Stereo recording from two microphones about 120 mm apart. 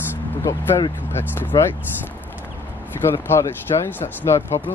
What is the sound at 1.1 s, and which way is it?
Speech, 20° left (ahead or behind).